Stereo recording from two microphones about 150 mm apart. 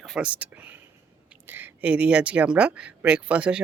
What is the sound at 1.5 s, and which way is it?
Speech, 10° right (ahead or behind).